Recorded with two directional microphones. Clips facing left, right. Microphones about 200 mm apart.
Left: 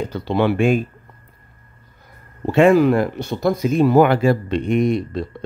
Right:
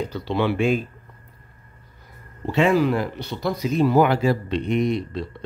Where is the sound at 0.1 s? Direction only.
50° left (ahead or behind).